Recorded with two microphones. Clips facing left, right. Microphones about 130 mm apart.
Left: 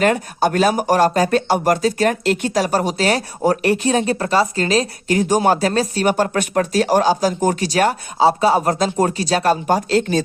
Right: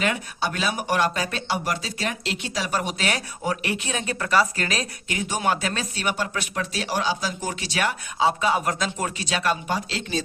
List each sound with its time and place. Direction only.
0.0 s speech: 45° left (ahead or behind)